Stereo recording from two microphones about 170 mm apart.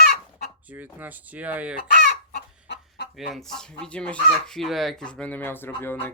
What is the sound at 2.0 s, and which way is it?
Chicken, 75° left (ahead or behind).